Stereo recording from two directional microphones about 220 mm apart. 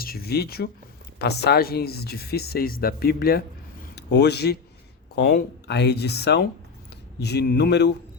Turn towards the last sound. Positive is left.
turn(degrees=50)  # may be behind; listen again after turning